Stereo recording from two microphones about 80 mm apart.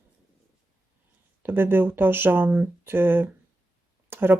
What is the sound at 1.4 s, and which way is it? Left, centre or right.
Speech, right.